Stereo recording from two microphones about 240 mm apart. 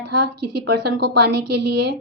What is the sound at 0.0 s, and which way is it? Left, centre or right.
A woman's voice, right.